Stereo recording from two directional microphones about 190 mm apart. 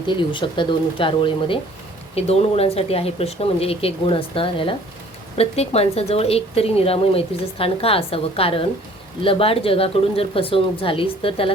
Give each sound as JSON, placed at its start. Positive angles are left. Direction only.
{"t": 0.1, "sound": "a woman's voice", "side_deg": 25}